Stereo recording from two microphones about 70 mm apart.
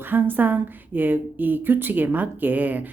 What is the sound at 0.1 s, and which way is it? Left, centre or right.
A woman's voice, right.